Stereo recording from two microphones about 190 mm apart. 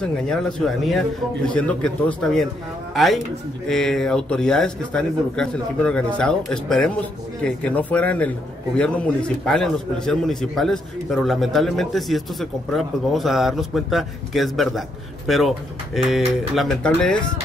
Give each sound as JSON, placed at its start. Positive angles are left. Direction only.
{"t": 0.0, "sound": "a man's voice", "side_deg": 5}